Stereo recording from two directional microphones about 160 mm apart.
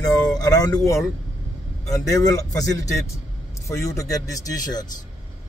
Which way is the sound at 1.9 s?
20° left (ahead or behind).